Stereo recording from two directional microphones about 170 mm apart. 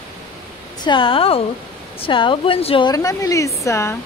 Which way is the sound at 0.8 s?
30° left (ahead or behind).